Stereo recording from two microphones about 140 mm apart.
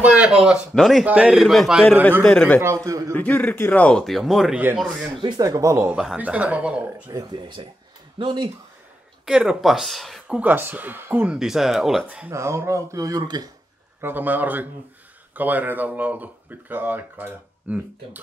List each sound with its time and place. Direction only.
0.0 s speech: 10° right (ahead or behind)
2.2 s a man's voice: 10° left (ahead or behind)
2.6 s speech: 20° right (ahead or behind)
3.2 s a man's voice: 10° left (ahead or behind); by 5.2 s 5° right (ahead or behind)
5.2 s speech: 30° right (ahead or behind)
5.9 s speech: 5° right (ahead or behind)
7.1 s speech: 30° right (ahead or behind)
9.2 s speech: 5° right (ahead or behind)
11.3 s speech: 5° right (ahead or behind)
12.3 s speech: 20° right (ahead or behind)
14.0 s speech: 10° right (ahead or behind)